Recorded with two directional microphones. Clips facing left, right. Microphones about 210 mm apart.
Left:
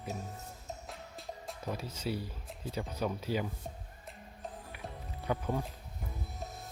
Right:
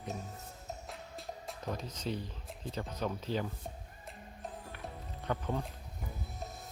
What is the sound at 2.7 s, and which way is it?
Speech, 10° left (ahead or behind).